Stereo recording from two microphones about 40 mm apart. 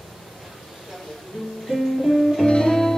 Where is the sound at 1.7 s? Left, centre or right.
Centre.